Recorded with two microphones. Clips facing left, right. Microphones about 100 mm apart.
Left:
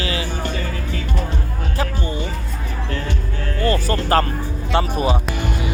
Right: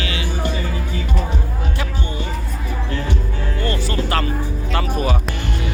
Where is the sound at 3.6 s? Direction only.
40° left (ahead or behind).